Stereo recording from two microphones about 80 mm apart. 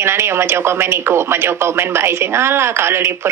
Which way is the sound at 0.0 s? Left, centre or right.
Right.